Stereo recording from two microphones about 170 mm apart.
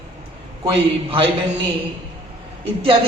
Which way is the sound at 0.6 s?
30° right (ahead or behind).